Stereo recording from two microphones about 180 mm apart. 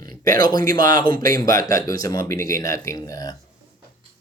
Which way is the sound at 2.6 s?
20° left (ahead or behind).